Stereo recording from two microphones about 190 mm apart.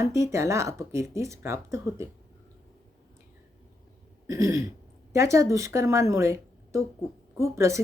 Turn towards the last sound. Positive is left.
turn(degrees=-15)  # may be behind; listen again after turning